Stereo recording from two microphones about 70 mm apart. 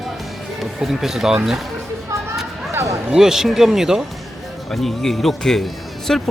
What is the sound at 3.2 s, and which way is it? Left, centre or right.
Speech, centre.